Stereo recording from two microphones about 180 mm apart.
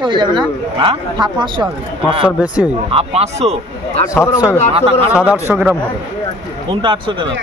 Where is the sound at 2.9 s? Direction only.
35° right (ahead or behind).